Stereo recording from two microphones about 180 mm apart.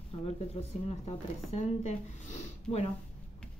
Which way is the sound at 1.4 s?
40° left (ahead or behind).